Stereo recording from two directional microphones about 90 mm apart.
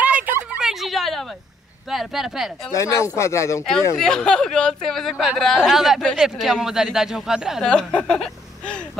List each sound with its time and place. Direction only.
0.0 s a sound: 20° right (ahead or behind)
0.6 s a sound: 5° right (ahead or behind)
1.9 s speech: 5° right (ahead or behind)
2.7 s speech: 30° left (ahead or behind)
3.6 s speech: 5° left (ahead or behind)
5.1 s speech: 5° right (ahead or behind)
5.4 s speech: 5° left (ahead or behind)
7.6 s speech: 10° left (ahead or behind)